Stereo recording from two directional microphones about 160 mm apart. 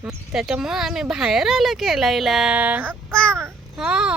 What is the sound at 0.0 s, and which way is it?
Speech, 5° right (ahead or behind).